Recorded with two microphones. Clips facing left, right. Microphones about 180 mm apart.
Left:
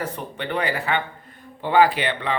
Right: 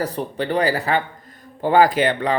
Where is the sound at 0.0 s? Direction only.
35° right (ahead or behind).